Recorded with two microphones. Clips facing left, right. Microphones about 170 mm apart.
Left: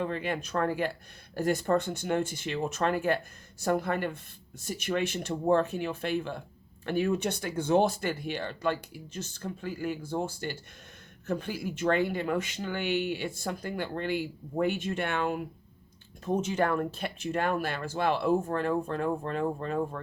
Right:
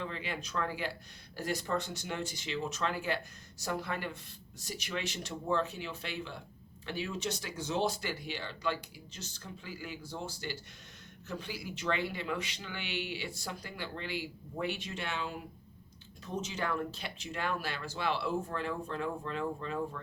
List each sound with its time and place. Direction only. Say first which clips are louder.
0.0 s speech: left 8 dB; 50° left (ahead or behind)